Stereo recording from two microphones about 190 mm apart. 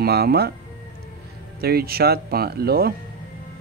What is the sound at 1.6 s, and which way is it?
Speech, 55° right (ahead or behind).